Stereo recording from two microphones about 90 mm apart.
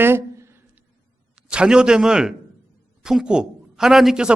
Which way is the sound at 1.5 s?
10° right (ahead or behind).